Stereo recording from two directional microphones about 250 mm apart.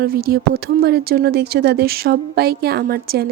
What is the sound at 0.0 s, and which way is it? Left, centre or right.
Speech, right.